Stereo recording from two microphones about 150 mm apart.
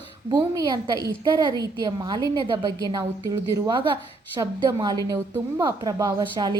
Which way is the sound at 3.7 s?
35° right (ahead or behind).